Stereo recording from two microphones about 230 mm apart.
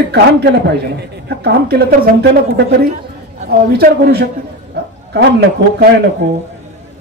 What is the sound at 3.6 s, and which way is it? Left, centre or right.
Speech, right.